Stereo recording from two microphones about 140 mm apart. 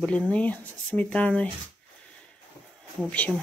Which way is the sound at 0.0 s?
10° left (ahead or behind).